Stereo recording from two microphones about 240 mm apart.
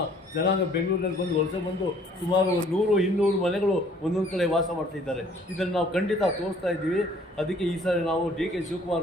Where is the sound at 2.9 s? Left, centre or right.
Centre.